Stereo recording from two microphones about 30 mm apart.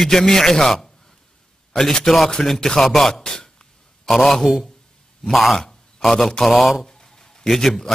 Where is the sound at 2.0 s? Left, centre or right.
Centre.